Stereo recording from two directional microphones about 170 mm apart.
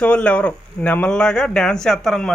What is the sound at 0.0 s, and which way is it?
Speech, 5° left (ahead or behind).